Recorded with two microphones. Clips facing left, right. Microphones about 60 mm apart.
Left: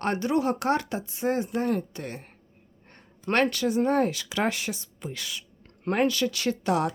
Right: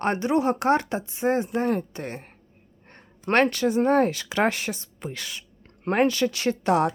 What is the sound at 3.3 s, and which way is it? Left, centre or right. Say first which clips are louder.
Speech: right 3 dB; right.